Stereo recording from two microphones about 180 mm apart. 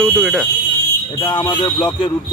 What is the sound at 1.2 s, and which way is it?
Speech, 25° left (ahead or behind).